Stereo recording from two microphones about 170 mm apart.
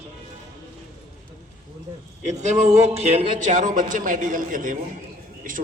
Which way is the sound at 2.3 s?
45° right (ahead or behind).